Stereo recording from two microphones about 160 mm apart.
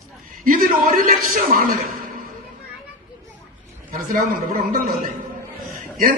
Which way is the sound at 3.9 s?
60° right (ahead or behind).